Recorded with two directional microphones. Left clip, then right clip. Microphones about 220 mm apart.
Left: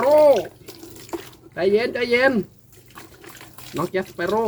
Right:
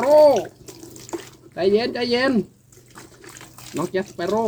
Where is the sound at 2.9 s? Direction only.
10° left (ahead or behind).